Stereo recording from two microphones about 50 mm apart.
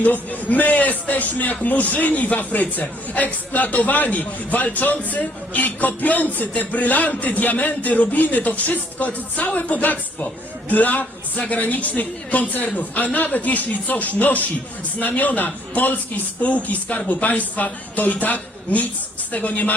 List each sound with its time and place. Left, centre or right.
0.0 s a man's voice: left